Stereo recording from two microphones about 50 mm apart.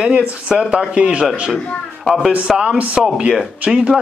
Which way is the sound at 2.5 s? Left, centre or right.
Centre.